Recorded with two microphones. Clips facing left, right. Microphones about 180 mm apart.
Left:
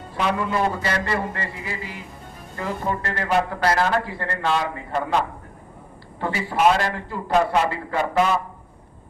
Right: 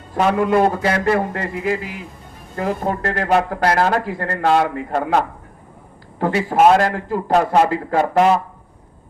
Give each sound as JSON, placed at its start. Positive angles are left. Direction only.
{"t": 0.1, "sound": "a man's voice", "side_deg": -50}
{"t": 6.4, "sound": "a man's voice", "side_deg": -45}